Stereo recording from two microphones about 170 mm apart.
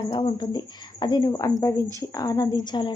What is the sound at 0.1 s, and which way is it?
Whip, 30° left (ahead or behind).